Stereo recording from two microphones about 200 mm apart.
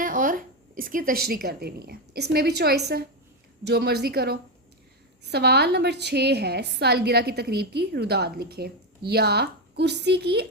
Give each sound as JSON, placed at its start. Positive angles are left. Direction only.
{"t": 0.0, "sound": "a woman's voice", "side_deg": -40}